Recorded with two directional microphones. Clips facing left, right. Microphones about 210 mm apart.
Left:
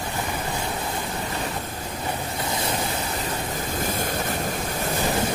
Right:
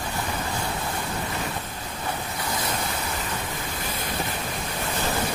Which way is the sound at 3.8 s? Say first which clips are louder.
Left 7 dB; 45° left (ahead or behind).